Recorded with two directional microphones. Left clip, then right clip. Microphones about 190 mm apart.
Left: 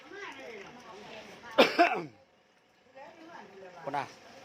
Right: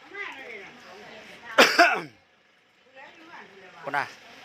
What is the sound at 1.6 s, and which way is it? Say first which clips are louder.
Throat clearing: right 6 dB; 5° right (ahead or behind).